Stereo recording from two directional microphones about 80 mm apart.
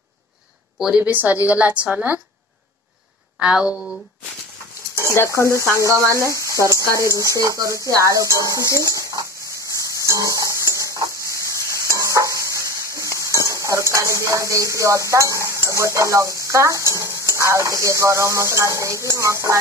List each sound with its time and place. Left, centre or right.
0.7 s speech: centre
1.0 s a woman's voice: right
3.3 s a woman's voice: centre
4.9 s speech: left
5.9 s speech: right
10.0 s a sound: right